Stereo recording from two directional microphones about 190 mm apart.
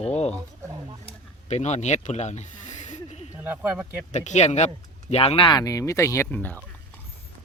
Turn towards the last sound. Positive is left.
turn(degrees=10)  # may be behind; listen again after turning